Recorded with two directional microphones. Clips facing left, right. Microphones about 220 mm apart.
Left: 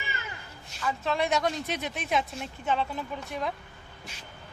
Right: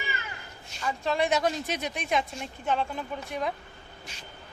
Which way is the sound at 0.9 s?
Centre (ahead or behind).